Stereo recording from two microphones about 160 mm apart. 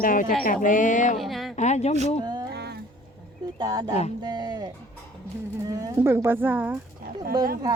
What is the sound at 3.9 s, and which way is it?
Speech, 40° left (ahead or behind).